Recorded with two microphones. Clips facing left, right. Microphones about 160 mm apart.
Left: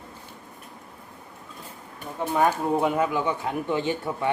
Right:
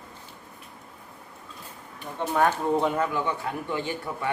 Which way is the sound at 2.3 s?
5° left (ahead or behind).